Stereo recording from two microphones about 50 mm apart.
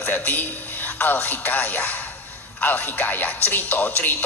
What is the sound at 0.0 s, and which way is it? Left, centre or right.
A woman's voice, left.